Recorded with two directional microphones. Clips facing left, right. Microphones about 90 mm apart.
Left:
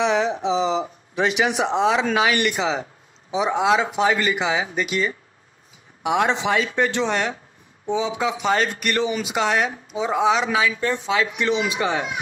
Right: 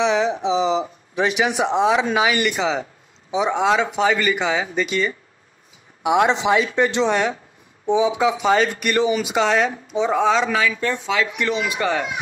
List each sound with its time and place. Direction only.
0.0 s speech: centre (ahead or behind)
2.5 s speech: 5° left (ahead or behind)
6.0 s speech: 15° right (ahead or behind)
7.1 s speech: centre (ahead or behind)
7.8 s speech: 20° right (ahead or behind)
8.1 s speech: 5° right (ahead or behind); by 10.7 s 10° left (ahead or behind)
10.7 s a man's voice: 25° left (ahead or behind)